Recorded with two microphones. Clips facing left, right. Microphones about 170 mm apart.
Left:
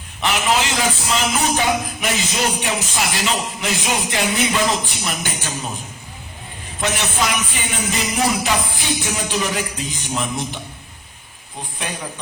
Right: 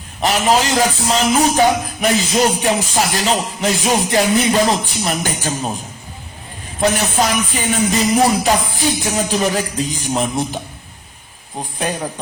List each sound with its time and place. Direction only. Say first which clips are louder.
0.2 s a man's voice: right 4 dB; 40° right (ahead or behind)
6.7 s a man's voice: right 6 dB; 40° right (ahead or behind)
11.8 s a man's voice: right 7 dB; 40° right (ahead or behind)